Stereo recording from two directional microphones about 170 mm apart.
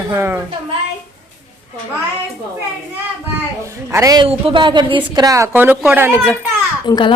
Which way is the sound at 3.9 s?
20° right (ahead or behind).